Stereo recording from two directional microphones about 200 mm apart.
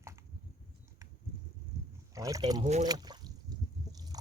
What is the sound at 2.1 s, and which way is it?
Speech, 15° right (ahead or behind).